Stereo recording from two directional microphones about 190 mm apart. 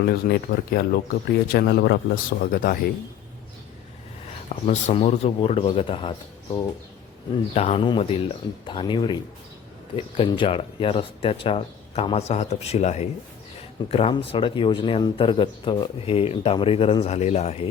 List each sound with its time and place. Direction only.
0.0 s a man's voice: 55° left (ahead or behind)
4.6 s a man's voice: 35° left (ahead or behind)